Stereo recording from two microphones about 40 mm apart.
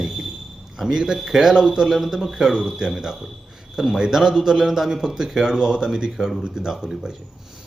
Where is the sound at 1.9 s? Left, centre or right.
Centre.